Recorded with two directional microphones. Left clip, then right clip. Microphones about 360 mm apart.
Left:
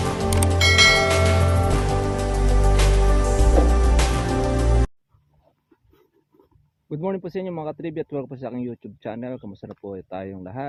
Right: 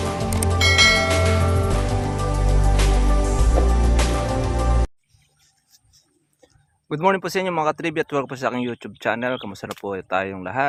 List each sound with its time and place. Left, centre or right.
0.0 s bell: centre
6.9 s speech: centre